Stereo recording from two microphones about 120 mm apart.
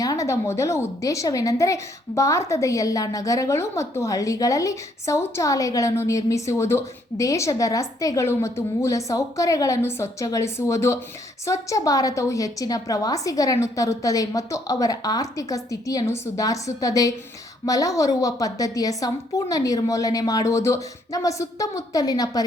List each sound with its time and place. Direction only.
0.0 s a woman's voice: 30° left (ahead or behind)